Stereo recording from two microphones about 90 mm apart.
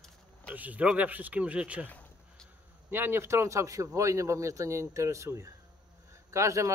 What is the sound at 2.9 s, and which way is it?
Speech, 25° right (ahead or behind).